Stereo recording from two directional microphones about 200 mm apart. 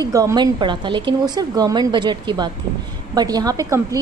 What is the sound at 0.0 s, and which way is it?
A woman's voice, 15° right (ahead or behind).